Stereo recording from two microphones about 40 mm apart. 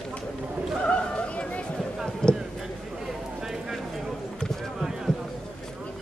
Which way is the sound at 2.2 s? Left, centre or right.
Centre.